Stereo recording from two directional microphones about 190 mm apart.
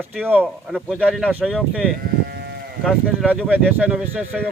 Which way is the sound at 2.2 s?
60° right (ahead or behind).